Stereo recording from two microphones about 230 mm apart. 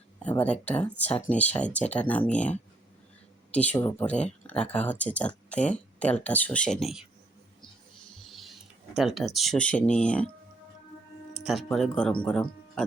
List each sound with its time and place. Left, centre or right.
0.4 s speech: centre
8.2 s speech: centre
11.4 s speech: centre